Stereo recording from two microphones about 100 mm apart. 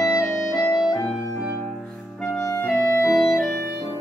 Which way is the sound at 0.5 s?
10° left (ahead or behind).